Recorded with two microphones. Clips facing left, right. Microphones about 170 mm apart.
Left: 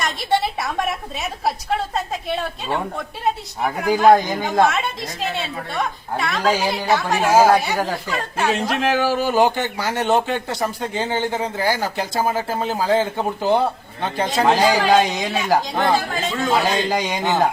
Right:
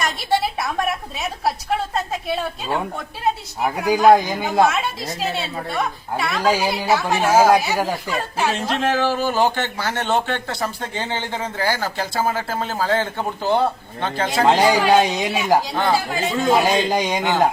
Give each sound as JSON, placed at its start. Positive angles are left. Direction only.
{"t": 0.0, "sound": "a woman's voice", "side_deg": 0}
{"t": 3.8, "sound": "a woman's voice", "side_deg": -10}
{"t": 7.3, "sound": "a man's voice", "side_deg": 15}
{"t": 7.5, "sound": "a woman's voice", "side_deg": -5}
{"t": 8.6, "sound": "a man's voice", "side_deg": 10}
{"t": 14.4, "sound": "speech", "side_deg": -15}